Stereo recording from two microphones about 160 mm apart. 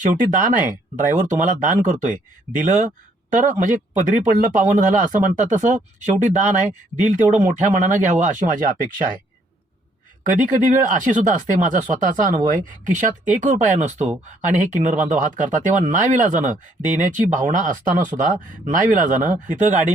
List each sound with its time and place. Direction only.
0.0 s speech: 55° right (ahead or behind)
10.2 s speech: 50° right (ahead or behind)